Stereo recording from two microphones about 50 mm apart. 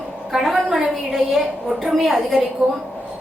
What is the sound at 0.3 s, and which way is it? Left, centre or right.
A woman's voice, centre.